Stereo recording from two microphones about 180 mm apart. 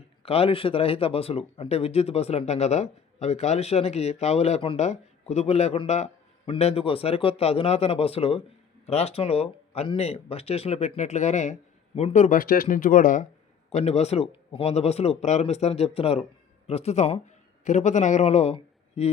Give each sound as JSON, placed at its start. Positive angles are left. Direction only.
{"t": 0.2, "sound": "speech", "side_deg": 35}
{"t": 13.7, "sound": "speech", "side_deg": 35}